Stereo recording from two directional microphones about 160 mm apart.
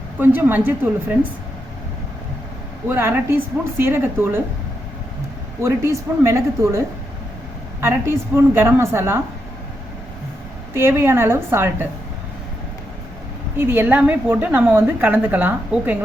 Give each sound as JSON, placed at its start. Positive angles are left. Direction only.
{"t": 0.2, "sound": "a woman's voice", "side_deg": -10}
{"t": 2.9, "sound": "a woman's voice", "side_deg": -15}
{"t": 5.6, "sound": "a woman's voice", "side_deg": -15}
{"t": 10.8, "sound": "a woman's voice", "side_deg": -15}
{"t": 13.6, "sound": "a woman's voice", "side_deg": -15}